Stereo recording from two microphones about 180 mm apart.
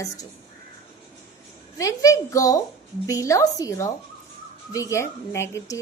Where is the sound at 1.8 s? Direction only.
20° left (ahead or behind).